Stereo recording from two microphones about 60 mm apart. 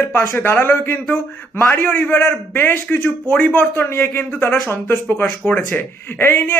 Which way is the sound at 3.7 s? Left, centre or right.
Left.